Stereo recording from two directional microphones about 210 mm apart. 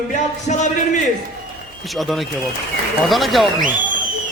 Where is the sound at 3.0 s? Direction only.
Centre (ahead or behind).